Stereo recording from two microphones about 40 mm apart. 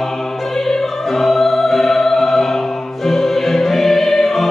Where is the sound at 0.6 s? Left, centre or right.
Centre.